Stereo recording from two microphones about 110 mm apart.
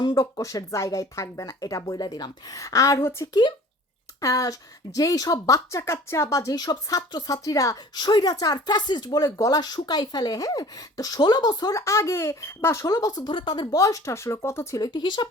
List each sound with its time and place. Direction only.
0.0 s speech: 35° left (ahead or behind)
7.9 s speech: 45° left (ahead or behind); by 14.8 s 25° left (ahead or behind)
14.9 s speech: 40° left (ahead or behind)